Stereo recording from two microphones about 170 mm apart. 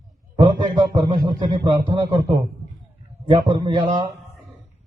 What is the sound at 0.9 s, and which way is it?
A man's voice, 25° right (ahead or behind).